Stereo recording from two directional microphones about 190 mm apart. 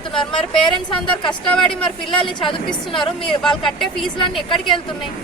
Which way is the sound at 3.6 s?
Centre (ahead or behind).